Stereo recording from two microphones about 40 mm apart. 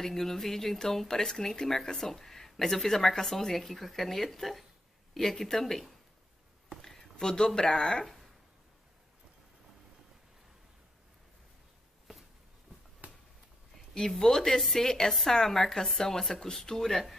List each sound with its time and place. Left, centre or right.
0.0 s speech: centre
13.0 s a sound: right
13.7 s speech: centre